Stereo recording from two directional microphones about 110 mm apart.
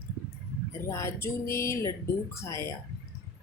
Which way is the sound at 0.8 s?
25° left (ahead or behind).